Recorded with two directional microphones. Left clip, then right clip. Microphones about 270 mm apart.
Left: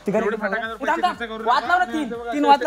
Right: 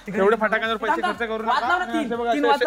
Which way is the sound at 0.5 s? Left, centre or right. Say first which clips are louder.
Right 3 dB; right.